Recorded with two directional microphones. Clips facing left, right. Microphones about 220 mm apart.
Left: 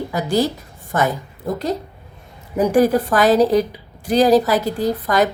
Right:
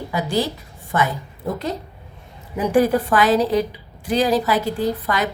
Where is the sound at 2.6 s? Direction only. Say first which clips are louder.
Left 2 dB; 40° left (ahead or behind).